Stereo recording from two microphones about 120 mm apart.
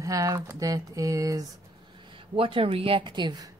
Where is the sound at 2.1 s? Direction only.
45° right (ahead or behind).